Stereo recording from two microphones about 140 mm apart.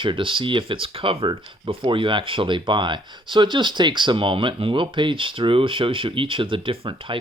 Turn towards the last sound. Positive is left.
turn(degrees=-40)  # may be behind; listen again after turning